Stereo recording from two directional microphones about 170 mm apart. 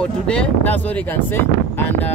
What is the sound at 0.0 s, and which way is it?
Speech, 5° left (ahead or behind).